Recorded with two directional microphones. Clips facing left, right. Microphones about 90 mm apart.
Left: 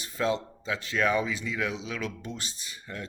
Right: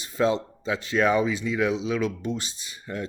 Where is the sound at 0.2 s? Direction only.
25° right (ahead or behind).